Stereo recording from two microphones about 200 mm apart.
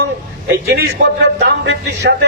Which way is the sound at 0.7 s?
55° right (ahead or behind).